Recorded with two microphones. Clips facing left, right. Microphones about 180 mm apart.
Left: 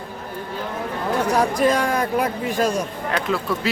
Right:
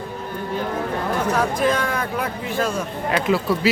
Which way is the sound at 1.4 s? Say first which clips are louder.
Left 3 dB; 35° left (ahead or behind).